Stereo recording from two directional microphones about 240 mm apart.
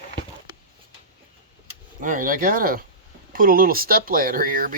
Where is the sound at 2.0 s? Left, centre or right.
Right.